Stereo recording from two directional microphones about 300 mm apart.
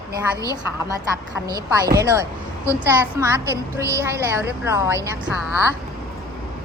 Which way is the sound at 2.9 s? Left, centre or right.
Centre.